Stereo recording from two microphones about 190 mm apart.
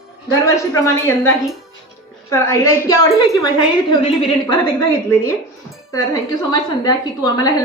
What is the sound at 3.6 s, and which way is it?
A woman's voice, 25° left (ahead or behind).